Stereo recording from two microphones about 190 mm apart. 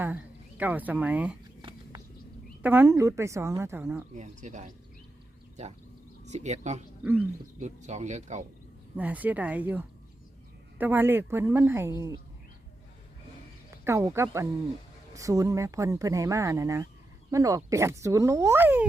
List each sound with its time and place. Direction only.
0.0 s speech: 10° right (ahead or behind)
2.6 s speech: 10° right (ahead or behind)
4.1 s speech: 40° right (ahead or behind)
6.2 s speech: 35° right (ahead or behind)
7.0 s speech: 10° right (ahead or behind)
7.6 s speech: 40° right (ahead or behind)
9.0 s speech: 10° right (ahead or behind)
13.8 s speech: 15° right (ahead or behind)